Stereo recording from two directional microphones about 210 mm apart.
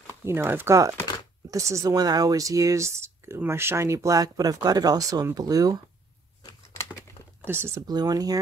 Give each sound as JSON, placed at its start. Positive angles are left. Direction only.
{"t": 0.2, "sound": "speech", "side_deg": -10}
{"t": 6.4, "sound": "a sound", "side_deg": 15}
{"t": 7.4, "sound": "speech", "side_deg": -10}